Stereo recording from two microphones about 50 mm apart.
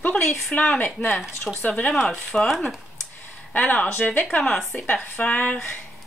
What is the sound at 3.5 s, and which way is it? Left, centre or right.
A woman's voice, left.